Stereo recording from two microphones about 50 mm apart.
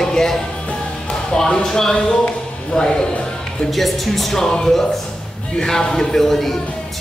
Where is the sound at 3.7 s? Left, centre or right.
Centre.